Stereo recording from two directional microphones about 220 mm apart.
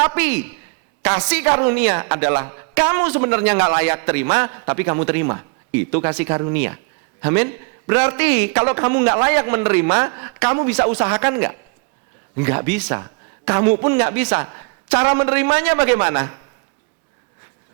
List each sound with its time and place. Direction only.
0.0 s a woman's voice: 15° right (ahead or behind)